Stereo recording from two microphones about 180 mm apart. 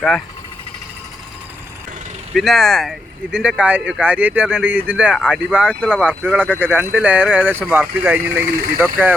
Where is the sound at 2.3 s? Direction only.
Centre (ahead or behind).